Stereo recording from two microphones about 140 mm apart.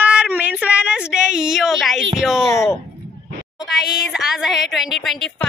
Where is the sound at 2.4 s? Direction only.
20° left (ahead or behind).